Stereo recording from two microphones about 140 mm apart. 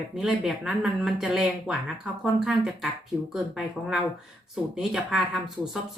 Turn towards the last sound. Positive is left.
turn(degrees=-5)  # may be behind; listen again after turning